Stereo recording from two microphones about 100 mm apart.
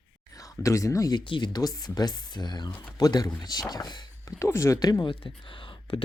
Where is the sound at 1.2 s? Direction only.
50° left (ahead or behind); by 4.9 s 30° left (ahead or behind).